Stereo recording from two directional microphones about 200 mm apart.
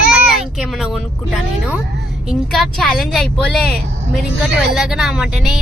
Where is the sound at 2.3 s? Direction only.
Centre (ahead or behind).